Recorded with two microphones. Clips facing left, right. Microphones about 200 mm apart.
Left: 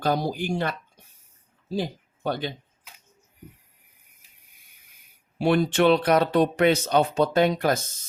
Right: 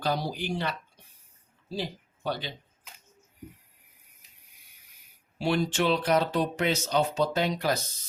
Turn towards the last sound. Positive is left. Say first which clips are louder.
# left 6 dB
turn(degrees=50)  # may be behind; listen again after turning